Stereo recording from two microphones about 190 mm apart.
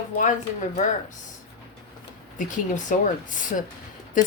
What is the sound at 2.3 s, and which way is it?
Speech, 40° left (ahead or behind).